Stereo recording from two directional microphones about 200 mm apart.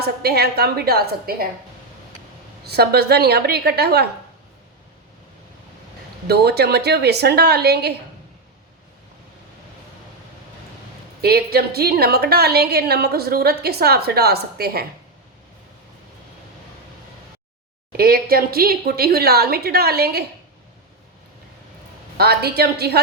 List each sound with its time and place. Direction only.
0.0 s a woman's voice: 50° right (ahead or behind)
2.6 s a woman's voice: 55° right (ahead or behind)
6.2 s a woman's voice: 55° right (ahead or behind)
11.2 s a woman's voice: 50° right (ahead or behind)
17.9 s a woman's voice: 50° right (ahead or behind)
22.2 s a woman's voice: 50° right (ahead or behind)